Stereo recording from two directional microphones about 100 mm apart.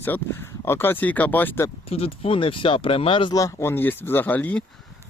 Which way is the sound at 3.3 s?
35° left (ahead or behind).